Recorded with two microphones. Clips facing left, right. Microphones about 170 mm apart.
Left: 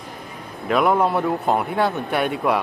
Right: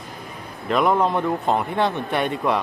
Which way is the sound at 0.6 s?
5° left (ahead or behind).